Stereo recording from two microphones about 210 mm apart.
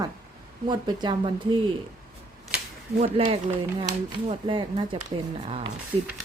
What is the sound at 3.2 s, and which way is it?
A woman's voice, 25° right (ahead or behind).